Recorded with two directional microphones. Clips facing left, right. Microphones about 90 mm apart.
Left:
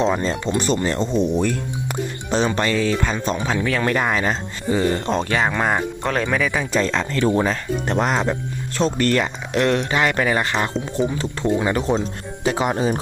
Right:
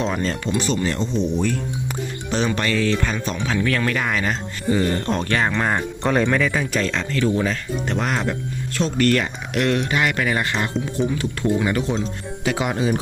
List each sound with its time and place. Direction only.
0.0 s speech: 25° left (ahead or behind)
0.6 s speech: 40° left (ahead or behind)
2.3 s speech: 25° left (ahead or behind)
4.7 s speech: 20° left (ahead or behind)
6.0 s speech: centre (ahead or behind)
6.8 s speech: 35° left (ahead or behind)
8.1 s speech: 25° left (ahead or behind)